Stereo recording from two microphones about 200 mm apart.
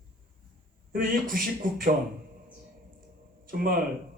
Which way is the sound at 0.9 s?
45° right (ahead or behind).